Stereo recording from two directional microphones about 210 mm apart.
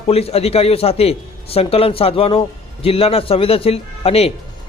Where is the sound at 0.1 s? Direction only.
30° left (ahead or behind).